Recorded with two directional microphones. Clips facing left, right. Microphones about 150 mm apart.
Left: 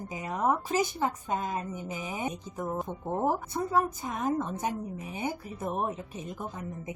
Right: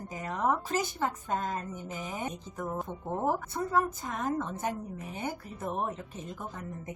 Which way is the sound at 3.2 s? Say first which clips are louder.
Left 1 dB; 15° left (ahead or behind).